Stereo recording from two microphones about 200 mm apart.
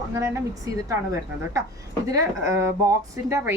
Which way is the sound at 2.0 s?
15° right (ahead or behind).